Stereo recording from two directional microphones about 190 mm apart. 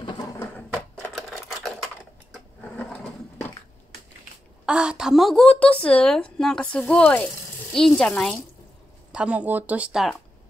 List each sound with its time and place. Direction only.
0.0 s a sound: 25° left (ahead or behind)
0.4 s sewing machine: 5° left (ahead or behind)
4.6 s a woman's voice: 5° right (ahead or behind)
9.1 s speech: 5° right (ahead or behind)